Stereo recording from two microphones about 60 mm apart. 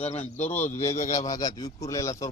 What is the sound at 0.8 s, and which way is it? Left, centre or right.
A man's voice, left.